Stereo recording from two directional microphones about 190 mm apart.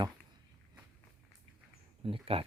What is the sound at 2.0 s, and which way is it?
Speech, 30° right (ahead or behind).